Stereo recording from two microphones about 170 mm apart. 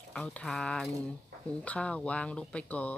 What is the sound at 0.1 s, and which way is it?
Speech, 5° left (ahead or behind).